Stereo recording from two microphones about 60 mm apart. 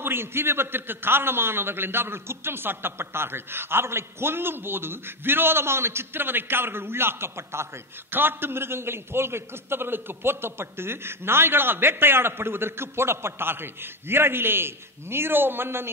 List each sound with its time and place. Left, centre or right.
0.0 s a man's voice: right